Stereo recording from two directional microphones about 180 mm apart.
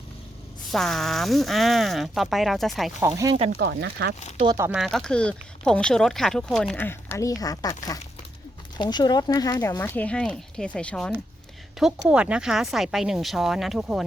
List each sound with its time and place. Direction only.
0.7 s speech: centre (ahead or behind)
3.0 s speech: 15° right (ahead or behind)
3.3 s speech: 30° right (ahead or behind)
3.6 s speech: 75° right (ahead or behind)
4.4 s speech: 15° right (ahead or behind)
4.7 s speech: centre (ahead or behind)